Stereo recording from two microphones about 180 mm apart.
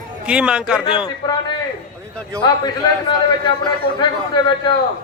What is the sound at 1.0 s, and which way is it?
A man's voice, 25° left (ahead or behind).